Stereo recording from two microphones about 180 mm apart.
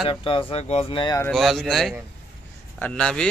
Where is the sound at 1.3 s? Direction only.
Centre (ahead or behind).